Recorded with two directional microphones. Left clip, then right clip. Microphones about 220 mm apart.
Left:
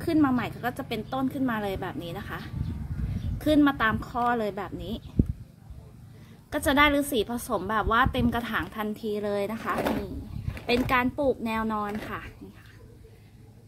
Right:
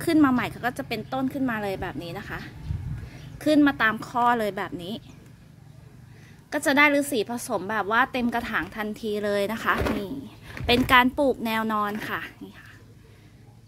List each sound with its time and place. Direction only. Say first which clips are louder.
0.0 s a woman's voice: right 3 dB; 30° right (ahead or behind)
6.5 s a woman's voice: right 2 dB; 20° right (ahead or behind); by 12.4 s 40° right (ahead or behind)